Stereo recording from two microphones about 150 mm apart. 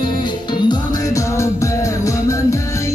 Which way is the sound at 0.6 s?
20° left (ahead or behind).